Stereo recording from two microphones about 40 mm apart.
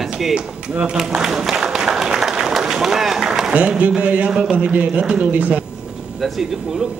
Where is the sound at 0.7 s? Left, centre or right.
Right.